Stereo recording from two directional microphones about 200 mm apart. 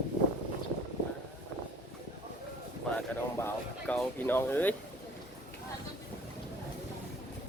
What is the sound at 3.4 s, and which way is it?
Speech, 5° left (ahead or behind).